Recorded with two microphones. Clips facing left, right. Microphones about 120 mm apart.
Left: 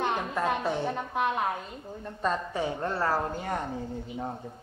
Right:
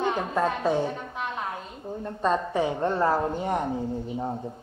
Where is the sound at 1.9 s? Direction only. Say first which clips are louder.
Right 5 dB; 25° right (ahead or behind).